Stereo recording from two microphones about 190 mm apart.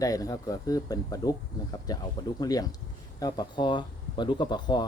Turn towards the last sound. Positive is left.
turn(degrees=20)  # may be behind; listen again after turning